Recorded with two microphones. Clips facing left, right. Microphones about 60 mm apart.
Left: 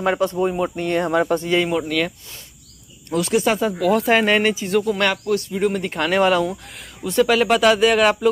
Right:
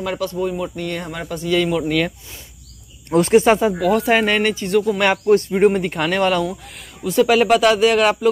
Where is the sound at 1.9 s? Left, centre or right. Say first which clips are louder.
Right 2 dB; centre.